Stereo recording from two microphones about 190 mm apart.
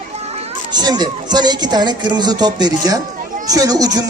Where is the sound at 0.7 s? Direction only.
20° right (ahead or behind).